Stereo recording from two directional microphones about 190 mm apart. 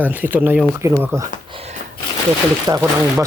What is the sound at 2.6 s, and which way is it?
Speech, 15° right (ahead or behind).